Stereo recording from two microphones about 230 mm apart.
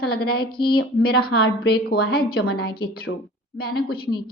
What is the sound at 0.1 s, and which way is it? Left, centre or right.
A woman's voice, left.